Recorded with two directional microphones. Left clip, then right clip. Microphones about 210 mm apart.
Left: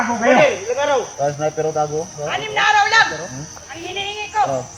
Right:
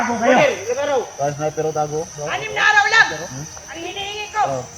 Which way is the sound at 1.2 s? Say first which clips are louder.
Left 2 dB; 55° left (ahead or behind).